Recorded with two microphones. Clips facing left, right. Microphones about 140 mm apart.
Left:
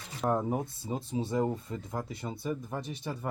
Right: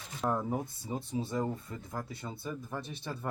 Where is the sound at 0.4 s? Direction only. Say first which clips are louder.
Left 3 dB; 25° left (ahead or behind).